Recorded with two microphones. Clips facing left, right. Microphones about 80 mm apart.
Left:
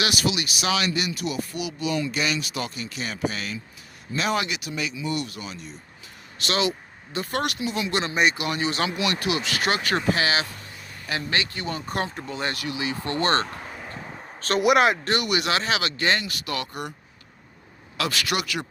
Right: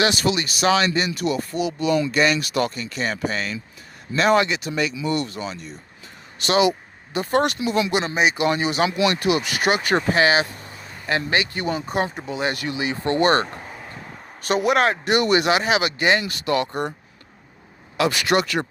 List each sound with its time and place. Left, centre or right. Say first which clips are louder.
0.0 s speech: right 5 dB; right
6.4 s speech: right 7 dB; right
8.0 s a man's voice: right 2 dB; centre
8.4 s speech: right 6 dB; right
11.7 s a man's voice: right 5 dB; centre
12.5 s speech: right 3 dB; right
13.7 s a sound: even; centre
14.6 s a man's voice: left 1 dB; centre
15.0 s speech: right 6 dB; right
17.9 s speech: right 6 dB; right
18.3 s speech: right 7 dB; right